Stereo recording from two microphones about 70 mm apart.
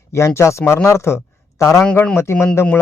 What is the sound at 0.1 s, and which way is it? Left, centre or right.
A man's voice, left.